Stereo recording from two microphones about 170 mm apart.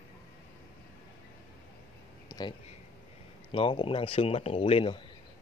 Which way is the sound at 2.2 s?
20° left (ahead or behind).